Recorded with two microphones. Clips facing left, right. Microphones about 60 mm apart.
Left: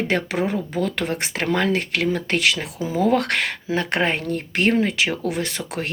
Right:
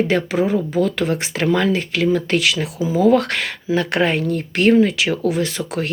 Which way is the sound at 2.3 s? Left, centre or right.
Left.